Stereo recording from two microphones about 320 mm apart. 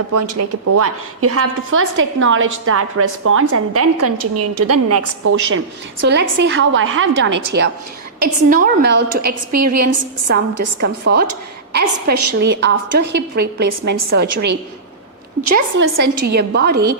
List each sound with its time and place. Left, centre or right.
0.2 s a woman's voice: right
7.3 s a woman's voice: right
8.2 s a woman's voice: right
9.2 s a woman's voice: right
10.3 s a woman's voice: right
15.5 s a woman's voice: right